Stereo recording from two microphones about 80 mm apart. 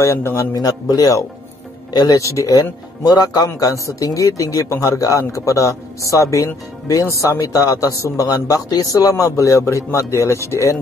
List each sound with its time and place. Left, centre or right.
0.0 s a man's voice: left
0.5 s a man's voice: left
3.4 s a man's voice: left